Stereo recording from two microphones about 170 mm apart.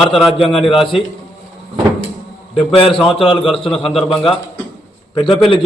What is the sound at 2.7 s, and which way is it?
Speech, 30° left (ahead or behind).